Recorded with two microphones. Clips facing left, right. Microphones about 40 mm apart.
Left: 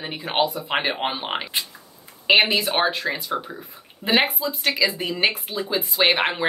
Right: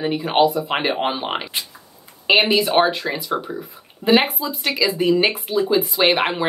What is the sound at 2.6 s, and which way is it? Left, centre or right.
Speech, centre.